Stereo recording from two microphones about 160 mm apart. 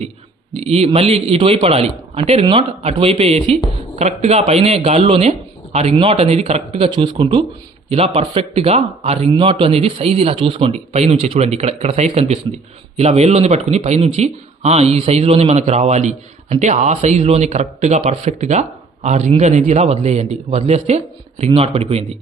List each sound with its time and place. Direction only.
0.5 s a man's voice: 40° right (ahead or behind)